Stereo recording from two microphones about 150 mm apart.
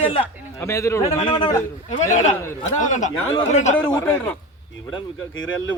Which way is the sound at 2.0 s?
55° left (ahead or behind).